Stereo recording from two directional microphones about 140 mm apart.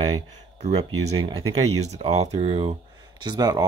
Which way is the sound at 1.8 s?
50° right (ahead or behind).